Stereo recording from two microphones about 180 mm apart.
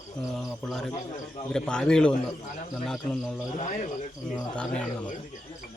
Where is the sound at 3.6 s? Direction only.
40° left (ahead or behind).